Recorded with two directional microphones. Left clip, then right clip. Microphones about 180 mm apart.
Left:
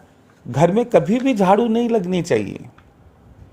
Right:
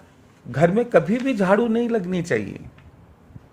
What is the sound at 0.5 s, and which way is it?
Speech, 30° left (ahead or behind).